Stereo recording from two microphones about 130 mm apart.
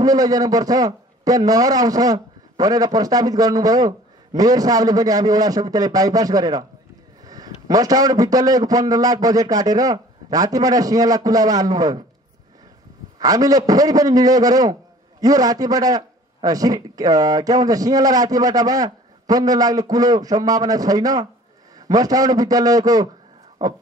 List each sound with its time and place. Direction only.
0.0 s a man's voice: 30° right (ahead or behind)
13.2 s a man's voice: 30° right (ahead or behind)